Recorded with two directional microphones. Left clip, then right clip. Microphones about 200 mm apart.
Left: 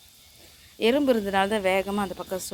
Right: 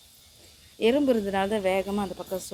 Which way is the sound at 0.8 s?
Centre (ahead or behind).